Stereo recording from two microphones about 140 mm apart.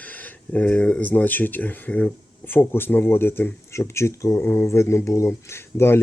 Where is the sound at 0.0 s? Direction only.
10° left (ahead or behind).